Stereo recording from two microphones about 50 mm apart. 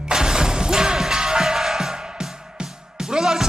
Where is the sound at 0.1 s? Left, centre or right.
Centre.